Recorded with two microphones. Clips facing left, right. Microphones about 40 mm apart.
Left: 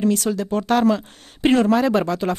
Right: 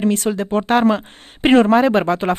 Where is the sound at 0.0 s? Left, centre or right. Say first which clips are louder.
Right 2 dB; right.